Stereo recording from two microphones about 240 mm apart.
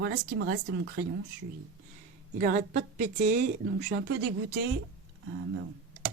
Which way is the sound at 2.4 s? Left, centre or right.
Right.